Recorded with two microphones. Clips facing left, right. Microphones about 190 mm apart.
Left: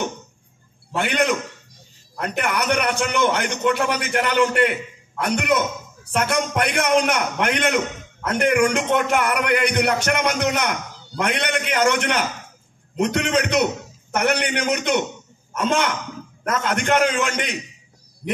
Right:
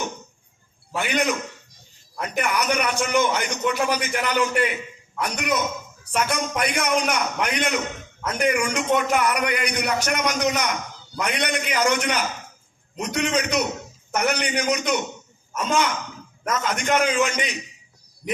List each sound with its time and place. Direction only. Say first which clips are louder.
0.9 s a man's voice: left 3 dB; 60° left (ahead or behind)